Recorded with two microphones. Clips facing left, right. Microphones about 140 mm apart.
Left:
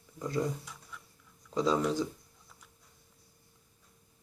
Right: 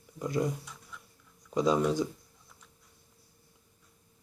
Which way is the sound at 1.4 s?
15° right (ahead or behind).